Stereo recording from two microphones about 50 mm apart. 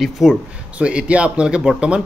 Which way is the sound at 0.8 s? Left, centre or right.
Right.